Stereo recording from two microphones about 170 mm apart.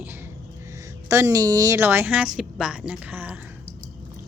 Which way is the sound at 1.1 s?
15° right (ahead or behind).